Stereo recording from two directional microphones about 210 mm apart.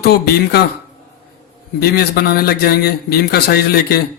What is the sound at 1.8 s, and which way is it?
Speech, 50° left (ahead or behind).